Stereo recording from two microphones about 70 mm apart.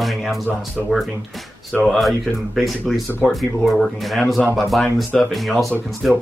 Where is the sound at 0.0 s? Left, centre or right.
Centre.